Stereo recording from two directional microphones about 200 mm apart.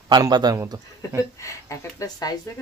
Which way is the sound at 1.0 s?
15° left (ahead or behind).